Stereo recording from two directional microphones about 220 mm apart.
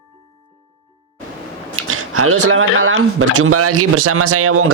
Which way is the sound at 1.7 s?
75° right (ahead or behind).